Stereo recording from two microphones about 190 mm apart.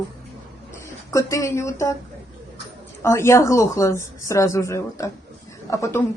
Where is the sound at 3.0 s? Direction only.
15° left (ahead or behind).